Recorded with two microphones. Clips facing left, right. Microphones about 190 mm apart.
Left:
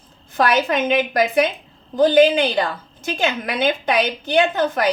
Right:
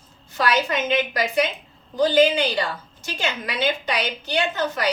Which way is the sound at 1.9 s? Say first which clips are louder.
Left 4 dB; 55° left (ahead or behind).